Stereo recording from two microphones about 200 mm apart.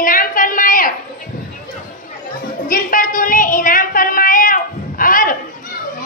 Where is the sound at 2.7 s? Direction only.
45° left (ahead or behind).